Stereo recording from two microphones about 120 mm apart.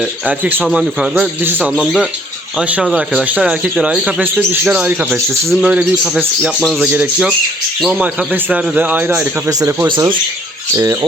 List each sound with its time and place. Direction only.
0.3 s speech: 15° right (ahead or behind)
1.1 s speech: 15° right (ahead or behind)
1.7 s speech: centre (ahead or behind)
7.8 s speech: centre (ahead or behind)
8.0 s speech: 10° right (ahead or behind)
9.5 s speech: 25° right (ahead or behind)